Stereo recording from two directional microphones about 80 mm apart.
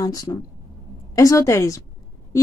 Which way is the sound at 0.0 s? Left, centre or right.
Left.